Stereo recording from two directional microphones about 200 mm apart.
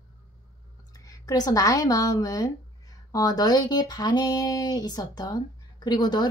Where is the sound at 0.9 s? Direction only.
15° left (ahead or behind).